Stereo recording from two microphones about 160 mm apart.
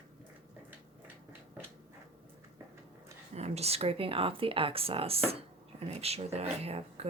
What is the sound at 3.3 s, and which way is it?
A woman's voice, 40° right (ahead or behind).